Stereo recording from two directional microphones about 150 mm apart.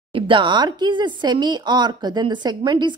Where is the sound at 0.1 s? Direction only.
35° right (ahead or behind).